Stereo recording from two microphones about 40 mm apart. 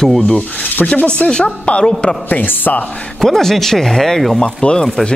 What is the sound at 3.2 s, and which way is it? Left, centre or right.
A woman's voice, centre.